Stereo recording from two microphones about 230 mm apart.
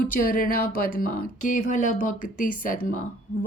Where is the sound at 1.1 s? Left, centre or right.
Left.